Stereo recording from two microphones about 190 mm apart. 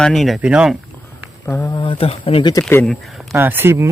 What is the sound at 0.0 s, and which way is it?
Speech, centre (ahead or behind).